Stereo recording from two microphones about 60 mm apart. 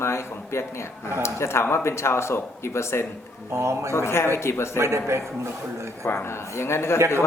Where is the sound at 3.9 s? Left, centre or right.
Left.